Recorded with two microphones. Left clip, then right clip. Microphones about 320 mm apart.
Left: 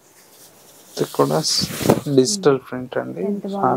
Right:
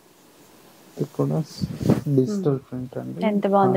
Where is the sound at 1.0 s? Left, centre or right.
Centre.